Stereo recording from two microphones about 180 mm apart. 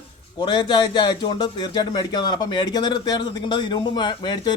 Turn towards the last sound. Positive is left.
turn(degrees=25)  # may be behind; listen again after turning